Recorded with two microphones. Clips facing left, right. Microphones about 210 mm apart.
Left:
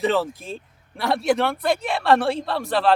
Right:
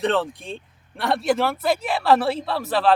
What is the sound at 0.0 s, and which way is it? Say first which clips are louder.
Speech: left 1 dB; centre (ahead or behind).